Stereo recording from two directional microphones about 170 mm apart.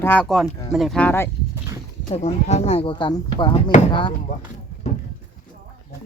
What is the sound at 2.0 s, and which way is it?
Speech, 40° left (ahead or behind).